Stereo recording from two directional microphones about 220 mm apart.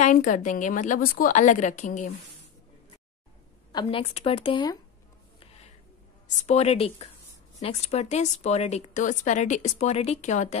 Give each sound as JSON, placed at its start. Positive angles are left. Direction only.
{"t": 0.0, "sound": "a woman's voice", "side_deg": 35}
{"t": 3.7, "sound": "speech", "side_deg": 25}
{"t": 6.2, "sound": "a woman's voice", "side_deg": 30}